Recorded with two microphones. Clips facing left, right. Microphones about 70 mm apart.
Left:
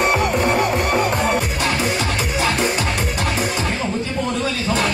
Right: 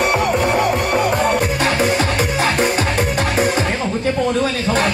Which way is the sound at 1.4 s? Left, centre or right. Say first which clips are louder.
Right 4 dB; right.